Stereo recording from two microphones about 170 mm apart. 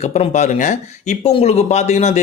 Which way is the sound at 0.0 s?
40° left (ahead or behind).